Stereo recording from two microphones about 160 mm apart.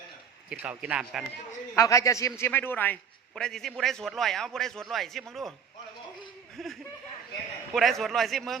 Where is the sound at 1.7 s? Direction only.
20° left (ahead or behind); by 5.6 s centre (ahead or behind).